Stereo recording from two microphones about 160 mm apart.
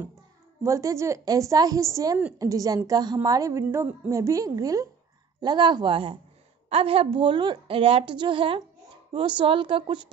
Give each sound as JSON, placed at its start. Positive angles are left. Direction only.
{"t": 0.7, "sound": "a woman's voice", "side_deg": -20}